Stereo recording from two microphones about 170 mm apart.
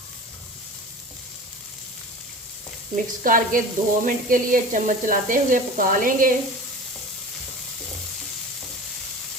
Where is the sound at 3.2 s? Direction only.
55° right (ahead or behind).